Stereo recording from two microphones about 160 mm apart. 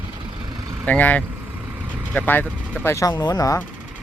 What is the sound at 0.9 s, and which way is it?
Speech, 10° left (ahead or behind).